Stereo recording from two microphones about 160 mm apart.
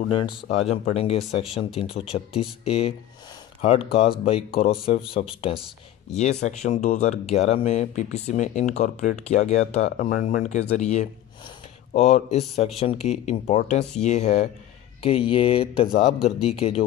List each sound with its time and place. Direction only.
0.5 s speech: 45° left (ahead or behind)
15.0 s speech: 35° left (ahead or behind)